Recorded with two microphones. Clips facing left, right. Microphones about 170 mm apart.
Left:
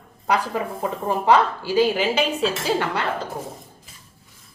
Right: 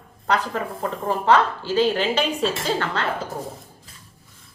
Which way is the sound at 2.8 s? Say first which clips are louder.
Left 1 dB; 10° left (ahead or behind).